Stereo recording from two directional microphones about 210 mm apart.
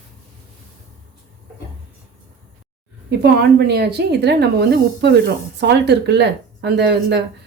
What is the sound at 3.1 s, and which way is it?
A woman's voice, 50° right (ahead or behind).